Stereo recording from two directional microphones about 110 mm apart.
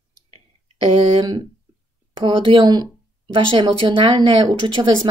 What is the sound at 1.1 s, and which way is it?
A woman's voice, 40° right (ahead or behind).